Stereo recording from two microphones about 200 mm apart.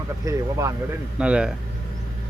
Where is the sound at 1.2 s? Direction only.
5° right (ahead or behind).